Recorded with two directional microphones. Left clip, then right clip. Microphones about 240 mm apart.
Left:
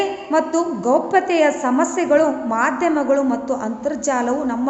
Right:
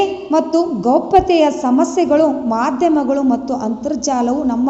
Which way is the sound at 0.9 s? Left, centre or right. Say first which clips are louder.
Right 5 dB; centre.